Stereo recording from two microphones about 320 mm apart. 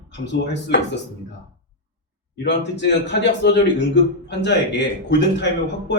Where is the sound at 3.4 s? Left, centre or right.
Left.